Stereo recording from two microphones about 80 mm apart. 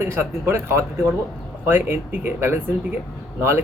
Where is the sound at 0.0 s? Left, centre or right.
Right.